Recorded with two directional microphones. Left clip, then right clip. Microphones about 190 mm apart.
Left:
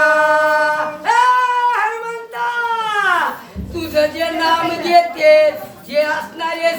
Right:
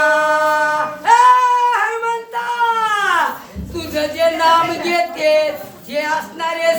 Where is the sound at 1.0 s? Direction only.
15° right (ahead or behind).